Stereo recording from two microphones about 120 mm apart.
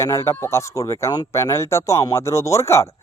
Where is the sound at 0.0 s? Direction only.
25° left (ahead or behind).